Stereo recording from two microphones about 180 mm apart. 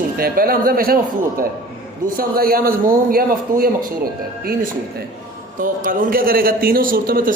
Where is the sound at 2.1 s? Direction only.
55° right (ahead or behind).